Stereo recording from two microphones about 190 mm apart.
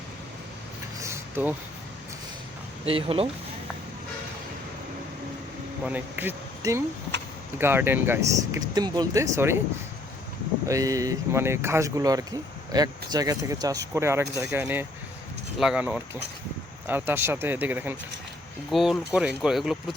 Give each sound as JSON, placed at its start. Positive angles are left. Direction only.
{"t": 0.9, "sound": "a sound", "side_deg": -15}
{"t": 2.8, "sound": "speech", "side_deg": -30}
{"t": 5.8, "sound": "speech", "side_deg": -10}
{"t": 10.7, "sound": "speech", "side_deg": -15}